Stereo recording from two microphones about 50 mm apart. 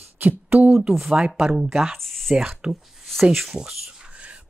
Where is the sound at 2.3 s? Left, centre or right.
Centre.